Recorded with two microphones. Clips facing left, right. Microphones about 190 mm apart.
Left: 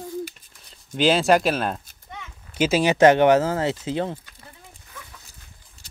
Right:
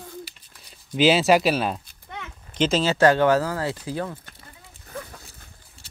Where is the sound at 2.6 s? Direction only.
10° left (ahead or behind).